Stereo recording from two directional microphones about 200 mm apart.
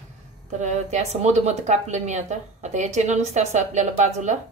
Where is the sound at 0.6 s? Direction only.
35° right (ahead or behind).